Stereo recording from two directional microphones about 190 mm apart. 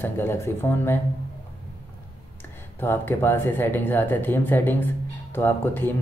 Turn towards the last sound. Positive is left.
turn(degrees=10)  # may be behind; listen again after turning